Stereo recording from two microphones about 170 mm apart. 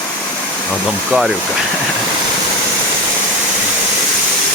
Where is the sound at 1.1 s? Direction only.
10° right (ahead or behind).